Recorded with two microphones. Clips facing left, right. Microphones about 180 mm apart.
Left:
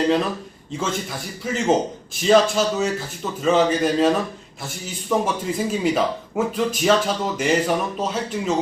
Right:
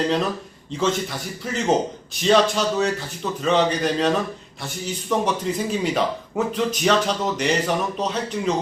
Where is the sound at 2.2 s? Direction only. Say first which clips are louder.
Left 2 dB; 5° left (ahead or behind).